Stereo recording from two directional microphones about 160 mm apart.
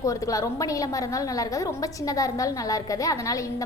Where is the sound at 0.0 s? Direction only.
20° left (ahead or behind).